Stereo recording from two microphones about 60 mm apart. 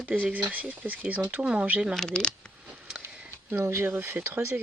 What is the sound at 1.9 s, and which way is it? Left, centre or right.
Speech, centre.